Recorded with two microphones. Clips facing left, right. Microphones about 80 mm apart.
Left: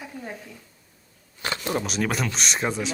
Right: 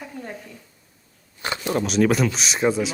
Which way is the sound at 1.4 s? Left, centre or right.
Centre.